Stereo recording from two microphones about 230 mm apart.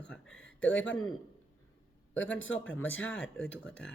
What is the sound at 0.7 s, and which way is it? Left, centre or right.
Speech, left.